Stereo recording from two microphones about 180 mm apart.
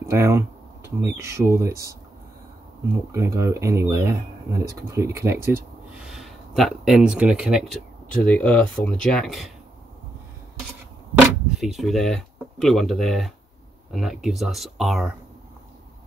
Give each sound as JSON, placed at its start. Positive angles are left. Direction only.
{"t": 0.1, "sound": "speech", "side_deg": -15}
{"t": 3.1, "sound": "speech", "side_deg": -15}
{"t": 6.1, "sound": "speech", "side_deg": 0}
{"t": 11.6, "sound": "speech", "side_deg": 0}